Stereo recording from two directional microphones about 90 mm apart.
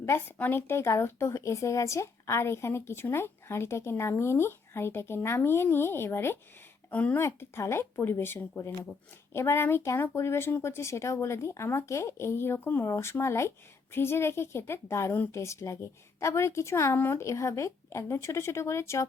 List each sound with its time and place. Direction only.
0.0 s a woman's voice: 30° left (ahead or behind)
6.9 s speech: 15° left (ahead or behind)
7.2 s a woman's voice: 30° left (ahead or behind)